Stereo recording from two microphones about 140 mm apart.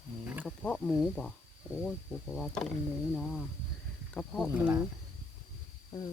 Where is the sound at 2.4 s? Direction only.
5° left (ahead or behind).